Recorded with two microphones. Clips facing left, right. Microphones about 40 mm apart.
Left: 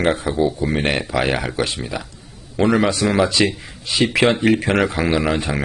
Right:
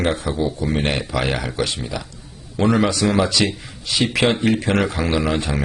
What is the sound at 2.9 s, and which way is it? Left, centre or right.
A man's voice, centre.